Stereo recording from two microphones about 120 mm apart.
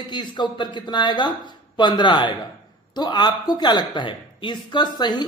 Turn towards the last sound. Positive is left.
turn(degrees=35)  # may be behind; listen again after turning